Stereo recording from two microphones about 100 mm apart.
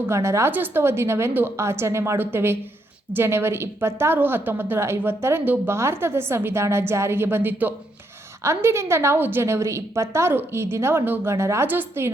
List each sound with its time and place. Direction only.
0.1 s a woman's voice: 30° right (ahead or behind)